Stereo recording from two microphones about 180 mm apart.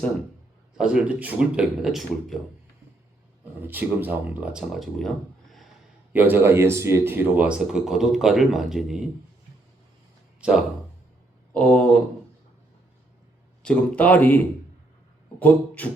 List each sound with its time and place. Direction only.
0.8 s speech: 5° right (ahead or behind)
3.6 s speech: 10° right (ahead or behind)
6.1 s speech: 10° right (ahead or behind)
10.4 s a sound: 5° right (ahead or behind)
11.5 s speech: 5° left (ahead or behind)
13.6 s speech: 5° left (ahead or behind)